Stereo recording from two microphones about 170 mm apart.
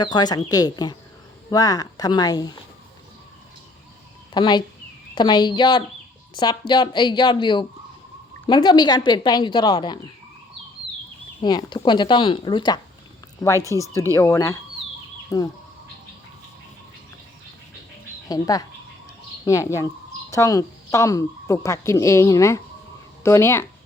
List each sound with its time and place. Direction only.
0.0 s speech: 25° left (ahead or behind)
4.4 s speech: 25° left (ahead or behind)
11.3 s speech: 25° left (ahead or behind)
18.3 s speech: 20° left (ahead or behind)